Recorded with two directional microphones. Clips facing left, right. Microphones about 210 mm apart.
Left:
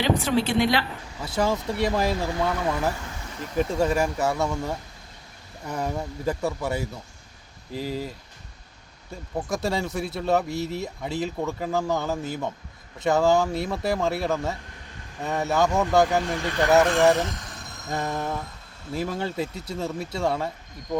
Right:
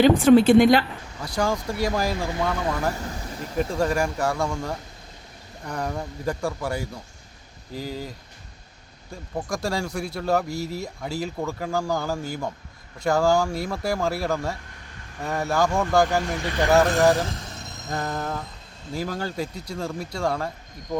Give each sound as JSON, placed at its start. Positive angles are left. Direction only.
{"t": 0.0, "sound": "speech", "side_deg": -50}
{"t": 1.2, "sound": "speech", "side_deg": 5}
{"t": 9.3, "sound": "speech", "side_deg": 5}
{"t": 17.2, "sound": "vehicle", "side_deg": -25}
{"t": 17.8, "sound": "speech", "side_deg": 0}